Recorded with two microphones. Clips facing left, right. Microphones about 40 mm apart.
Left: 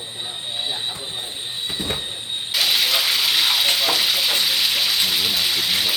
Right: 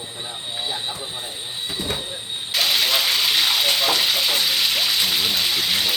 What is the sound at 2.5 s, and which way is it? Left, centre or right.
Frying, centre.